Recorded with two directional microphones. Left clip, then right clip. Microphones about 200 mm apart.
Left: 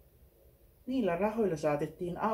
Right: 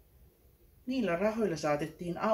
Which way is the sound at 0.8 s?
45° left (ahead or behind).